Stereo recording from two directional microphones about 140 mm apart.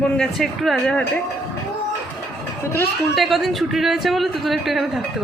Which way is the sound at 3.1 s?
Centre (ahead or behind).